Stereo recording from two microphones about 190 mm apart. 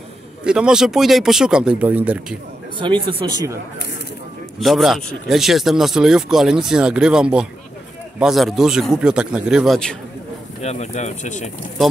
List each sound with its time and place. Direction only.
0.4 s speech: 5° right (ahead or behind)
2.8 s speech: 25° right (ahead or behind)
4.6 s speech: centre (ahead or behind)
10.6 s speech: 35° left (ahead or behind)